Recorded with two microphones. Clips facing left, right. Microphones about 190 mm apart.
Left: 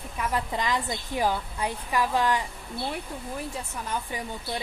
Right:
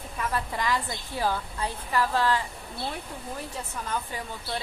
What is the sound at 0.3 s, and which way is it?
A woman's voice, 20° left (ahead or behind).